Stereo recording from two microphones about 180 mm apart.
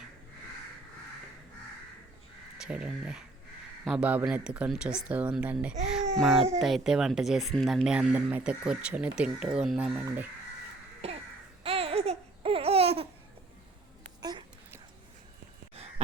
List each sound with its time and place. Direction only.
2.6 s speech: 5° right (ahead or behind)
11.6 s laughter: 30° right (ahead or behind)
14.2 s a sound: 25° right (ahead or behind)